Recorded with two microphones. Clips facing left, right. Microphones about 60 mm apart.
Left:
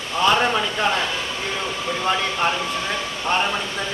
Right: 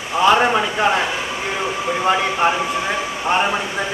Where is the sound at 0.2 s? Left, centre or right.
Right.